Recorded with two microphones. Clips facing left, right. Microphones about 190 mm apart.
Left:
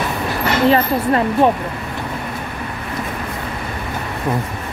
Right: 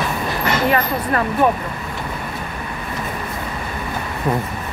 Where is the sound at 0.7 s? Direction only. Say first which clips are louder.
Left 4 dB; 25° left (ahead or behind).